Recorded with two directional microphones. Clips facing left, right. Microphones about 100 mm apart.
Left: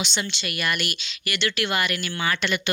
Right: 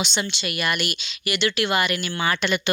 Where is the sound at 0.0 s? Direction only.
15° right (ahead or behind).